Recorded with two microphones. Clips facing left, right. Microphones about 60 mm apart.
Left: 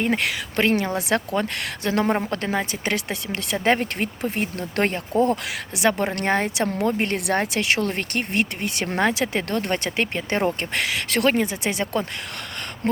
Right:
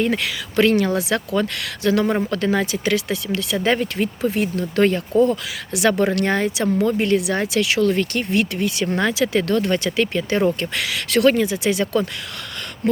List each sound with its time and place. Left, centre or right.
0.2 s speech: left
0.6 s speech: left
2.8 s speech: left
5.7 s speech: left
9.0 s speech: left
12.8 s speech: left